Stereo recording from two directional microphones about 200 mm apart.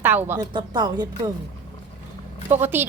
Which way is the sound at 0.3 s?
20° right (ahead or behind).